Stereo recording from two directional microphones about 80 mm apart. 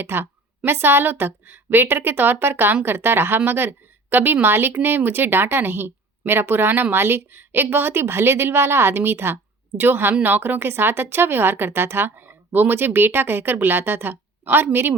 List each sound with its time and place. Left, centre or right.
0.0 s a woman's voice: right